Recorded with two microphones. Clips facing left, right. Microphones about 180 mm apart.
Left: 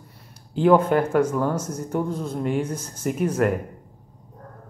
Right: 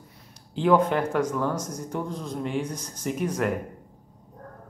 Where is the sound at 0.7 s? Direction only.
5° left (ahead or behind).